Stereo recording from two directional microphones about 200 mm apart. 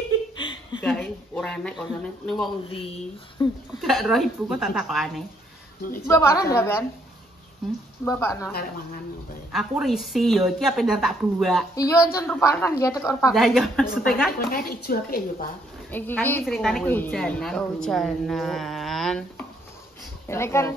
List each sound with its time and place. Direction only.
0.4 s chuckle: 25° left (ahead or behind)
0.8 s speech: 5° left (ahead or behind)
3.4 s speech: 20° left (ahead or behind)
3.8 s speech: centre (ahead or behind)
6.0 s speech: 15° left (ahead or behind)
8.0 s speech: 15° left (ahead or behind)
9.5 s speech: centre (ahead or behind)
11.7 s speech: 15° left (ahead or behind)
13.3 s speech: centre (ahead or behind)
14.5 s a woman's voice: 50° left (ahead or behind)
15.9 s speech: 10° left (ahead or behind)
16.8 s speech: 10° left (ahead or behind)
20.2 s speech: 15° left (ahead or behind)